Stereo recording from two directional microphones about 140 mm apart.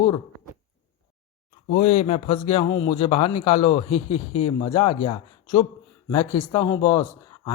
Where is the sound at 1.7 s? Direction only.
50° left (ahead or behind); by 7.0 s 30° left (ahead or behind).